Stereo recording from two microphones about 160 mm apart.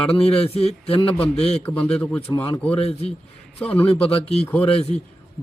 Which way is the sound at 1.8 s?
5° left (ahead or behind).